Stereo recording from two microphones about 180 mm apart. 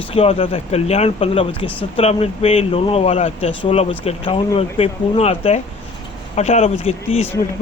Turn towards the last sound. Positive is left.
turn(degrees=35)  # may be behind; listen again after turning